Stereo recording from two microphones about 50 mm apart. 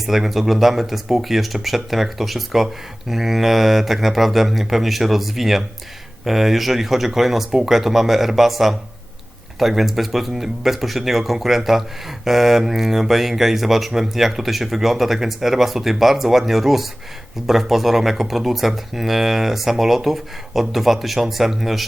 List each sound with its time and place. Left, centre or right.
0.0 s speech: centre